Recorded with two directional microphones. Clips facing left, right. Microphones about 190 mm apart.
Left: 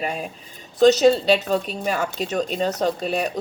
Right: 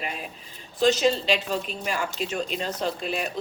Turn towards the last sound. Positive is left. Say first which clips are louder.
# left 6 dB
turn(degrees=40)  # may be behind; listen again after turning